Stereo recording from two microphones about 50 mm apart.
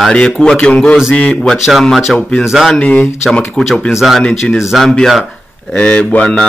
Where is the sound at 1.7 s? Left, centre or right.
Centre.